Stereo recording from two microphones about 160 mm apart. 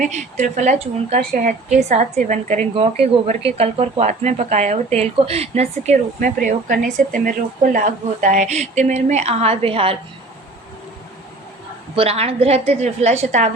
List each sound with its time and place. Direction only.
0.0 s speech: 50° right (ahead or behind)
1.3 s a woman's voice: 60° right (ahead or behind)
1.9 s speech: 45° right (ahead or behind)
2.7 s speech: 40° right (ahead or behind)
11.9 s a woman's voice: 40° right (ahead or behind)